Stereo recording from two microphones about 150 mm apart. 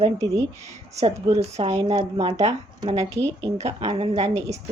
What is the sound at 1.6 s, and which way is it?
A woman's voice, 40° right (ahead or behind).